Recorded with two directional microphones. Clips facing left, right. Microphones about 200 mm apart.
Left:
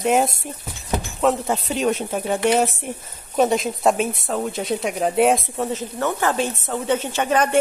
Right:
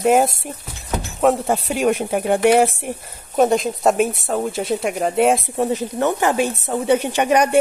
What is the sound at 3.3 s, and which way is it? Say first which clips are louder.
Speech: right 3 dB; centre (ahead or behind).